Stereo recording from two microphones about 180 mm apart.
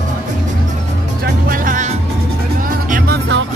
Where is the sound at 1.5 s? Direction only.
50° right (ahead or behind).